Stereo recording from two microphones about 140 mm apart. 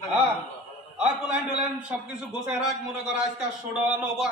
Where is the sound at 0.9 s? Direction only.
10° right (ahead or behind).